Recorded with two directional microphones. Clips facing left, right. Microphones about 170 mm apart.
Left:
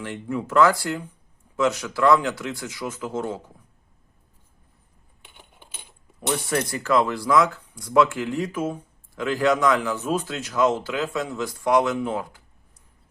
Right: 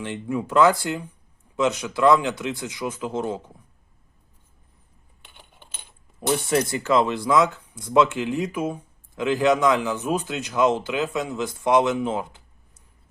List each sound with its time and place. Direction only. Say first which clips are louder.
0.0 s speech: right 1 dB; 15° right (ahead or behind)
5.2 s coin: left 1 dB; 10° left (ahead or behind)
6.1 s speech: right 3 dB; 25° right (ahead or behind)